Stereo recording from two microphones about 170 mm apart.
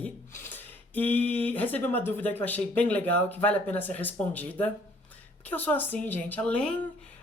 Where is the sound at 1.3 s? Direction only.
10° left (ahead or behind).